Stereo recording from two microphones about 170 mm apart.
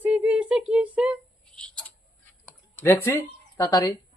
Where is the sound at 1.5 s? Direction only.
5° left (ahead or behind).